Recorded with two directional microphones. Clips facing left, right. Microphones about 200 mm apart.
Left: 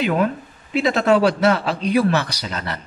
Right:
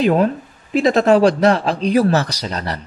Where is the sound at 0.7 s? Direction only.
40° right (ahead or behind).